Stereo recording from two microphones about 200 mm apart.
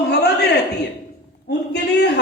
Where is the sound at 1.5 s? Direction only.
60° left (ahead or behind).